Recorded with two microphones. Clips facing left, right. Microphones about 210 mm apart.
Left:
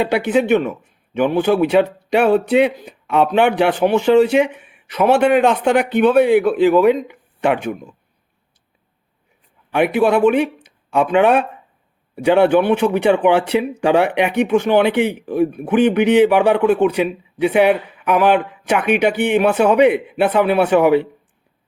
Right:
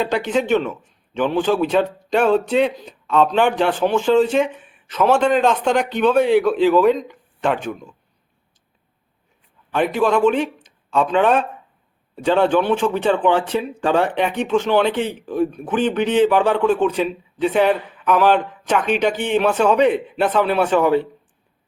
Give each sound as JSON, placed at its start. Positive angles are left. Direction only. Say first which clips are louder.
{"t": 0.0, "sound": "a man's voice", "louder": "left 4 dB", "side_deg": 10}
{"t": 3.9, "sound": "speech", "louder": "left 3 dB", "side_deg": 65}
{"t": 4.2, "sound": "a man's voice", "louder": "left 3 dB", "side_deg": 10}
{"t": 9.7, "sound": "a man's voice", "louder": "left 3 dB", "side_deg": 10}